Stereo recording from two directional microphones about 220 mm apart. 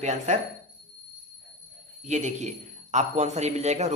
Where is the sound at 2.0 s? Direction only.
30° right (ahead or behind).